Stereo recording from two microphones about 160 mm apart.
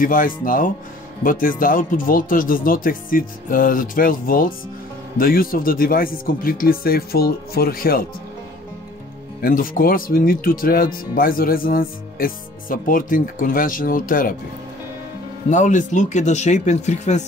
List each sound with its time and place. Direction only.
0.0 s speech: 60° left (ahead or behind)
9.4 s speech: 60° left (ahead or behind)
15.5 s speech: 50° left (ahead or behind)